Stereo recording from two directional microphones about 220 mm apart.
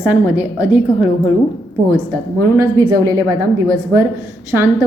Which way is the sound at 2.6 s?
15° right (ahead or behind).